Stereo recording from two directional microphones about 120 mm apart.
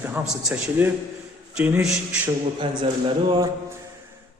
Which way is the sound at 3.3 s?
35° right (ahead or behind).